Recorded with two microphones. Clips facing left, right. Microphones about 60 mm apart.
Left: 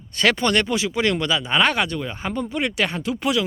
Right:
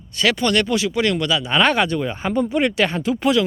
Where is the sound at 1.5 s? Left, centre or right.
Centre.